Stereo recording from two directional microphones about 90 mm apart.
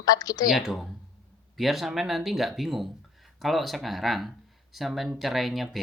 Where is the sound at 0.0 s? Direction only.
45° left (ahead or behind).